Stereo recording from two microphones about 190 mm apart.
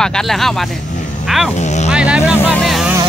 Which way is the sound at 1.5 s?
35° left (ahead or behind).